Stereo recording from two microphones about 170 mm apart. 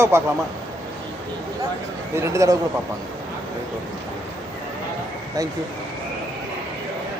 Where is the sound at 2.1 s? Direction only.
15° right (ahead or behind).